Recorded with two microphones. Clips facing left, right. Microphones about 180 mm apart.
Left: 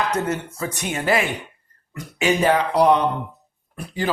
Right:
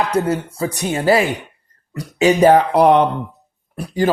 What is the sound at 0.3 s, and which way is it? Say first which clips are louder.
A man's voice: right 5 dB; 35° right (ahead or behind).